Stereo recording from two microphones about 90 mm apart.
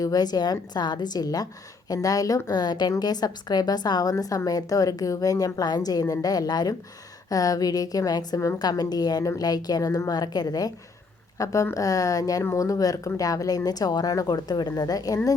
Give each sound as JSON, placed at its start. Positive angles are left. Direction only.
{"t": 0.0, "sound": "a woman's voice", "side_deg": 45}
{"t": 4.1, "sound": "a woman's voice", "side_deg": 35}
{"t": 11.3, "sound": "a woman's voice", "side_deg": 35}